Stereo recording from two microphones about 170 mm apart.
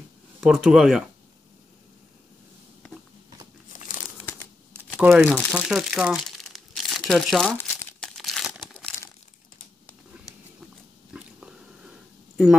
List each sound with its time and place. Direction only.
0.4 s speech: 5° right (ahead or behind)
3.7 s crumpling: 50° left (ahead or behind)
5.0 s speech: 5° right (ahead or behind)
5.5 s crumpling: 5° right (ahead or behind)
11.1 s biting: 5° right (ahead or behind)